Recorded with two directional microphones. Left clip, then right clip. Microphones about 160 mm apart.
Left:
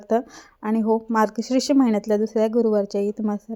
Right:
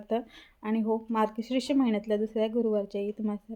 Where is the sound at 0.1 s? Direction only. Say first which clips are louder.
Left 9 dB; 40° left (ahead or behind).